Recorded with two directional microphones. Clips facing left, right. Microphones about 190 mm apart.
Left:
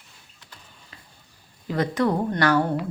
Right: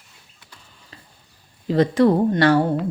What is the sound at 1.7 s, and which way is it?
Speech, 30° right (ahead or behind).